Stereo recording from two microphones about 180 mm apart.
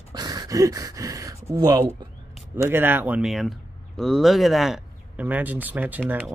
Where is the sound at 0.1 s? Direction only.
20° right (ahead or behind).